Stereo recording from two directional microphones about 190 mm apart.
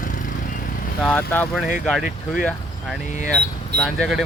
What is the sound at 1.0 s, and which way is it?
Speech, 5° left (ahead or behind).